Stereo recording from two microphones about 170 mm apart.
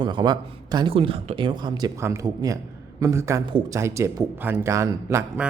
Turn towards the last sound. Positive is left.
turn(degrees=-15)  # may be behind; listen again after turning